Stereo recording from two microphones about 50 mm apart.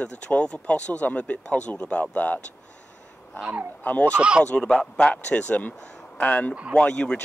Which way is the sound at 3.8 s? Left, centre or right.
Left.